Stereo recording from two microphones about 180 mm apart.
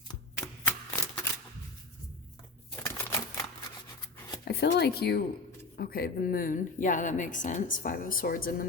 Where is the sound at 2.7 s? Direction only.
15° left (ahead or behind).